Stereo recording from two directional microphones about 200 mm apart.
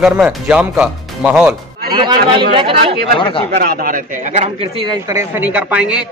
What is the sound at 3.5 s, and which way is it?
Speech, 50° right (ahead or behind).